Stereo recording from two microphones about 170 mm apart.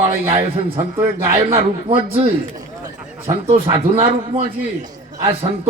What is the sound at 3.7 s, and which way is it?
Speech, 35° right (ahead or behind).